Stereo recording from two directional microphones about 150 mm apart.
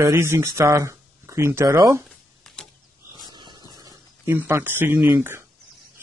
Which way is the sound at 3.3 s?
30° right (ahead or behind).